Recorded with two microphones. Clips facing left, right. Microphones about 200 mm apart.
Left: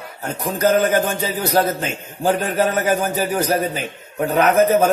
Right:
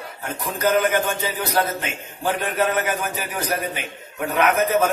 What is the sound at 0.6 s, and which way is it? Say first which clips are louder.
A man's voice: left 3 dB; 30° left (ahead or behind).